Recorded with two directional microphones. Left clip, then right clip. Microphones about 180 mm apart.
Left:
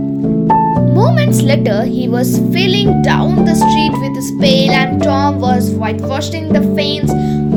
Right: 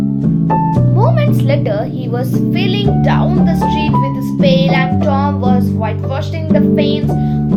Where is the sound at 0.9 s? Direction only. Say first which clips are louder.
Left 2 dB; 50° left (ahead or behind).